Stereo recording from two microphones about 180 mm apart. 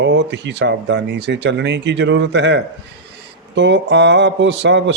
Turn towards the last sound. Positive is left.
turn(degrees=-80)